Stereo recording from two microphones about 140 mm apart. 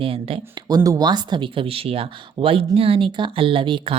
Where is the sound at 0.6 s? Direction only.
25° right (ahead or behind).